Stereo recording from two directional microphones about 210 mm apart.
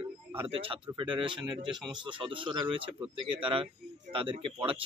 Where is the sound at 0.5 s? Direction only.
25° right (ahead or behind).